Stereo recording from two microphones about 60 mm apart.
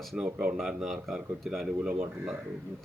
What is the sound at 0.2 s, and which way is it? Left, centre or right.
Speech, right.